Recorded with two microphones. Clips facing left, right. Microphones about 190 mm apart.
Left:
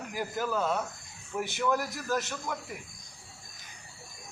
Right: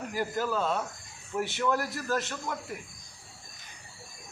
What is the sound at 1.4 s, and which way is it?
Speech, 15° left (ahead or behind).